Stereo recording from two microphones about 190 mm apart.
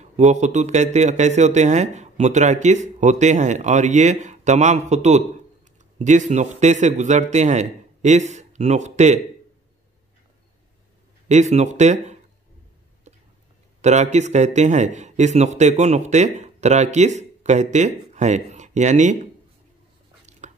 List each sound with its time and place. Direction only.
0.0 s speech: 35° right (ahead or behind)
11.2 s speech: 35° right (ahead or behind)
13.7 s speech: 35° right (ahead or behind)
20.2 s a sound: 40° right (ahead or behind)